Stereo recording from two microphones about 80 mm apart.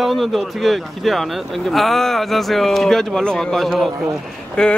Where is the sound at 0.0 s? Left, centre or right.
Centre.